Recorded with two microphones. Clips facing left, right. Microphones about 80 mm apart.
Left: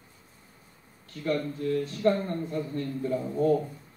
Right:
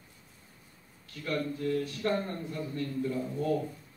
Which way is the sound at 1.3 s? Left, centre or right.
Left.